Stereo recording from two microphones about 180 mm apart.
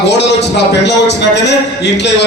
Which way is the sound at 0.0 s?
70° left (ahead or behind).